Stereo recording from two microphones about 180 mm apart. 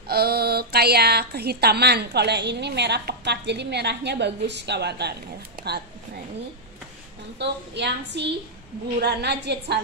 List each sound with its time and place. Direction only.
0.1 s speech: 60° right (ahead or behind)
7.3 s a woman's voice: 70° right (ahead or behind)